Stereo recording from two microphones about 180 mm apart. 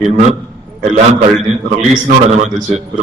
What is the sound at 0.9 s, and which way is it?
A man's voice, 40° right (ahead or behind).